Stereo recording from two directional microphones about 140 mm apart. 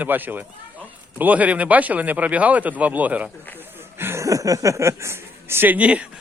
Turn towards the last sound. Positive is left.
turn(degrees=-5)  # may be behind; listen again after turning